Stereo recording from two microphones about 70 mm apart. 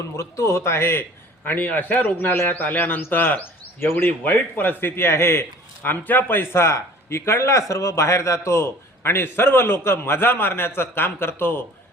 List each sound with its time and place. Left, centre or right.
0.2 s a man's voice: left
1.5 s a man's voice: left